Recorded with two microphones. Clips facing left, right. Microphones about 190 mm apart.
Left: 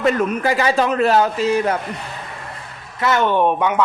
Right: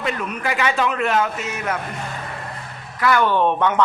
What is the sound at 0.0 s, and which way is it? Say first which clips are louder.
A man's voice: left 7 dB; 45° left (ahead or behind).